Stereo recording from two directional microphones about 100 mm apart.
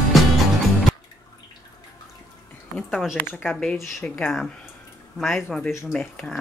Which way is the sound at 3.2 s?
20° left (ahead or behind).